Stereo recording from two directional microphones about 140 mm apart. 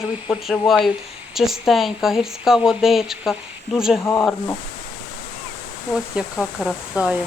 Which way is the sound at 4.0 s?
15° left (ahead or behind).